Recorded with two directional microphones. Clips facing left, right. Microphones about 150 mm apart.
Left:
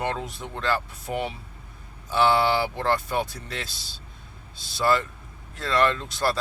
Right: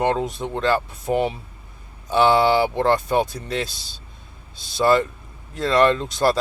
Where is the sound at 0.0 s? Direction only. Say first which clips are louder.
Right 8 dB; 20° right (ahead or behind).